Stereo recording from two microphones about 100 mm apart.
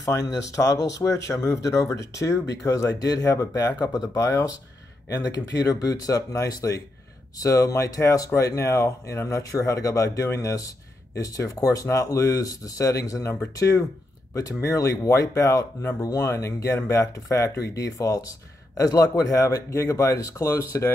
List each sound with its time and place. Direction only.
0.0 s speech: 40° left (ahead or behind)